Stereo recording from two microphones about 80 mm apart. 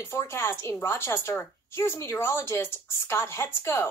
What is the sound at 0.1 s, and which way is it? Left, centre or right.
Speech, left.